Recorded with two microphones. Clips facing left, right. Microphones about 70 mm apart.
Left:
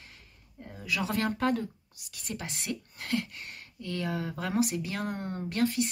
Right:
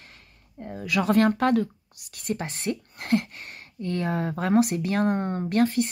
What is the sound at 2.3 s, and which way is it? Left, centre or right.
Speech, right.